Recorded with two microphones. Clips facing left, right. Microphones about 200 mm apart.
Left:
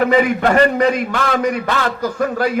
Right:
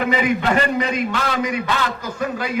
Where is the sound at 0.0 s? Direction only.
50° left (ahead or behind).